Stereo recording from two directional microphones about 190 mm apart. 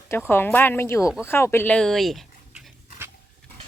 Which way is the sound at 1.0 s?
5° right (ahead or behind).